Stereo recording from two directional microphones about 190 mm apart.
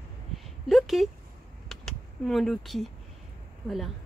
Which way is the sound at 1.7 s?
Centre (ahead or behind).